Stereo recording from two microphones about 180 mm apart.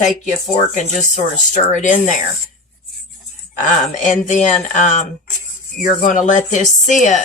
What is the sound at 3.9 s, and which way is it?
Speech, 40° left (ahead or behind).